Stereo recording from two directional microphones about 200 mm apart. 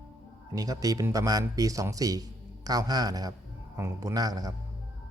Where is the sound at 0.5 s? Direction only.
15° right (ahead or behind).